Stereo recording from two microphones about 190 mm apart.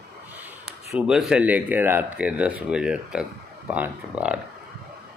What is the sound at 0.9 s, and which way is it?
Speech, 5° right (ahead or behind).